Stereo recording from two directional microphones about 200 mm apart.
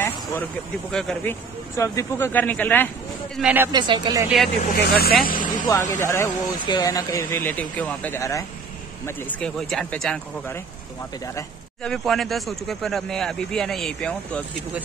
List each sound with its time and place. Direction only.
0.9 s speech: 5° left (ahead or behind)
3.3 s speech: 5° right (ahead or behind)
3.7 s speech: 20° right (ahead or behind)
4.6 s speech: 50° left (ahead or behind)
5.7 s speech: 15° left (ahead or behind)
9.0 s speech: 5° left (ahead or behind)
11.8 s speech: centre (ahead or behind)